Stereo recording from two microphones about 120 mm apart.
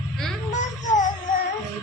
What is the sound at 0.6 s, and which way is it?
Music, 90° left.